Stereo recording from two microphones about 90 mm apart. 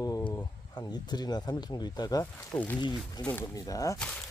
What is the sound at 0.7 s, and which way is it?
Speech, 50° left (ahead or behind).